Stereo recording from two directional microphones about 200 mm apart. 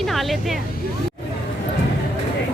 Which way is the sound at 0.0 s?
Centre (ahead or behind).